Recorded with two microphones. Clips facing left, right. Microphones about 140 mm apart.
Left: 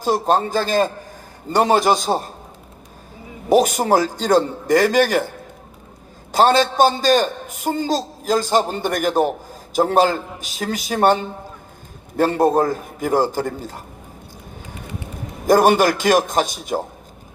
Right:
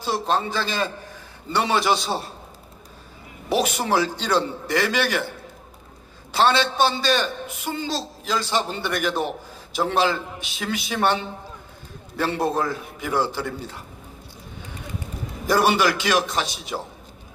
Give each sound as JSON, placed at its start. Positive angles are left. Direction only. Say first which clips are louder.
{"t": 0.0, "sound": "a man's voice", "louder": "left 6 dB", "side_deg": 45}
{"t": 3.5, "sound": "a man's voice", "louder": "left 7 dB", "side_deg": 45}
{"t": 6.3, "sound": "a man's voice", "louder": "left 5 dB", "side_deg": 45}
{"t": 15.4, "sound": "a man's voice", "louder": "left 6 dB", "side_deg": 45}